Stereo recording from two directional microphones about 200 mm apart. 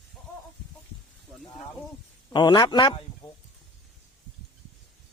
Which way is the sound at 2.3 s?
20° left (ahead or behind).